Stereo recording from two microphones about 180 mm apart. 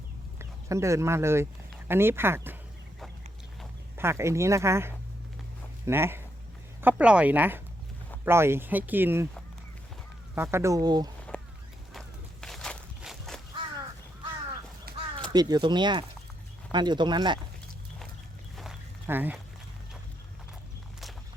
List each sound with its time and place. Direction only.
0.3 s speech: 15° right (ahead or behind)
3.9 s speech: 15° right (ahead or behind)
10.3 s speech: 15° right (ahead or behind)
11.9 s walk: centre (ahead or behind)
14.9 s a sound: 60° right (ahead or behind)
15.3 s speech: 20° right (ahead or behind)
18.5 s a sound: centre (ahead or behind)
19.0 s speech: 10° right (ahead or behind)